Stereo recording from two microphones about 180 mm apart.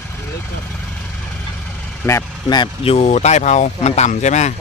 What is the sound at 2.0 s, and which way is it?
Speech, 20° left (ahead or behind).